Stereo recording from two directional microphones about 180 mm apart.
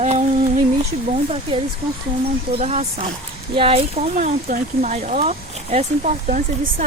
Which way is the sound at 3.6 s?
30° right (ahead or behind).